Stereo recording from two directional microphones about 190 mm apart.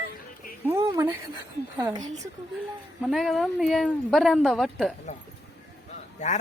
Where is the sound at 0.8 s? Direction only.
25° right (ahead or behind).